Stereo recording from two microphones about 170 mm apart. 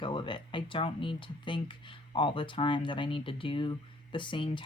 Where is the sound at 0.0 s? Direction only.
30° left (ahead or behind).